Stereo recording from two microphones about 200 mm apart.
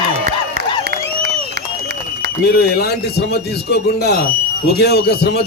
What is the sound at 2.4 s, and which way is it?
A man's voice, 50° left (ahead or behind).